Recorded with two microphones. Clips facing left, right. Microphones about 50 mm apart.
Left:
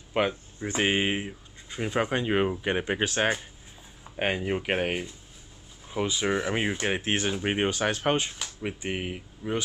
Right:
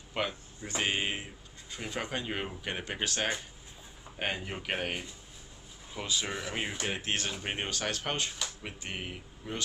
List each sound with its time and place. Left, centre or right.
0.1 s speech: left